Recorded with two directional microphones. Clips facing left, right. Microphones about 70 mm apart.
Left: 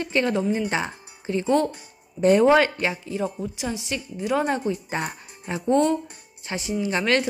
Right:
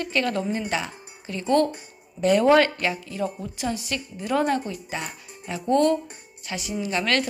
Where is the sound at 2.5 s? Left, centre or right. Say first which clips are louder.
Even; centre.